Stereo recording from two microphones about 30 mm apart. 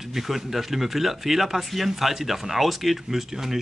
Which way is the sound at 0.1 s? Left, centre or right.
Centre.